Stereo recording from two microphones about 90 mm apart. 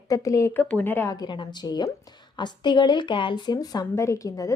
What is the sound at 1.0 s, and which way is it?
A woman's voice, 50° left (ahead or behind).